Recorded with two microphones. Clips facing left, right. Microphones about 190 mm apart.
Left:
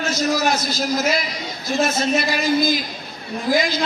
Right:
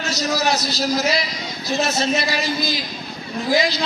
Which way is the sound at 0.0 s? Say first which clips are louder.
Left 2 dB; 50° left (ahead or behind).